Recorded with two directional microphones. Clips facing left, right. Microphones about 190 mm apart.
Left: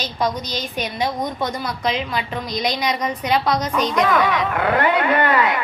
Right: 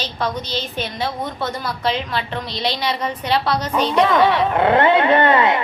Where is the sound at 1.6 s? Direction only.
Centre (ahead or behind).